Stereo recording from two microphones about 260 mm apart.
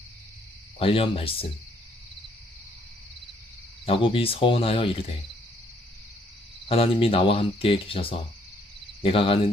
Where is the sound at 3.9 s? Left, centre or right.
Left.